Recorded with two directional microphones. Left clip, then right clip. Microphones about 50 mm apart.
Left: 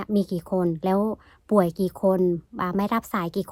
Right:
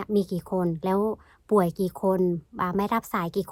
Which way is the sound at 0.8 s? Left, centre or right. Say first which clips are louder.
Left 1 dB; left.